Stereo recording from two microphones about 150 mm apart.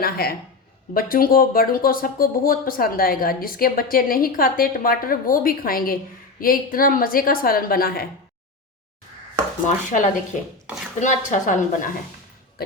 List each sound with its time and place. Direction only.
0.0 s speech: 90° left
0.9 s speech: 75° left (ahead or behind)
9.6 s a woman's voice: 55° left (ahead or behind)